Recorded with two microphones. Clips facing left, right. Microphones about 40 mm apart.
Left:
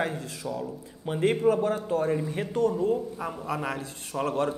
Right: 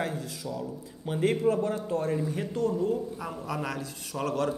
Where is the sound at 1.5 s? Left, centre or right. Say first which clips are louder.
Left 3 dB; left.